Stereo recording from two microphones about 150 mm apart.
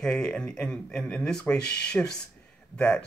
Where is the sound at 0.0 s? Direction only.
5° left (ahead or behind).